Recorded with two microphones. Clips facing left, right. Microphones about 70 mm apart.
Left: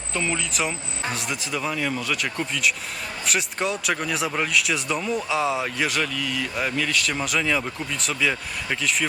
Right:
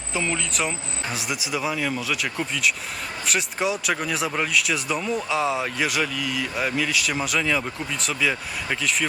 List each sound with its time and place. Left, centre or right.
0.1 s speech: centre